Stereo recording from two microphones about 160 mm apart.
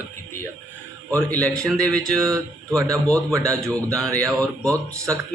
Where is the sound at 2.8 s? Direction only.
20° right (ahead or behind).